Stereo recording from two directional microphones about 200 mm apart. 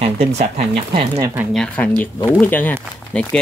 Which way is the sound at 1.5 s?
5° left (ahead or behind).